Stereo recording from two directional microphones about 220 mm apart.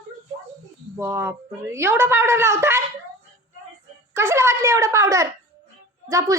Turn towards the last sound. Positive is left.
turn(degrees=-15)  # may be behind; listen again after turning